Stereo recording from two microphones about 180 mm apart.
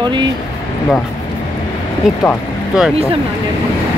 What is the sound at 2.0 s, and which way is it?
Speech, 5° right (ahead or behind).